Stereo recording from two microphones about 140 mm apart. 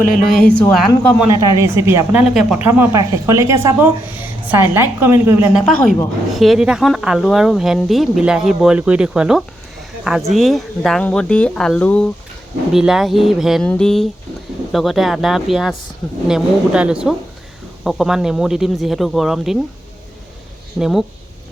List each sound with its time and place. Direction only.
0.1 s speech: 5° left (ahead or behind)
1.3 s a woman's voice: 25° right (ahead or behind)
2.3 s speech: 5° right (ahead or behind)
2.6 s a woman's voice: 15° right (ahead or behind)
5.5 s speech: centre (ahead or behind)
12.7 s speech: 5° right (ahead or behind)
20.7 s speech: 5° right (ahead or behind)